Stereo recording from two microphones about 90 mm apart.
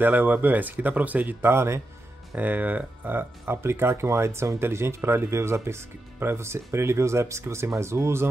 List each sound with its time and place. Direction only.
0.0 s speech: 20° right (ahead or behind)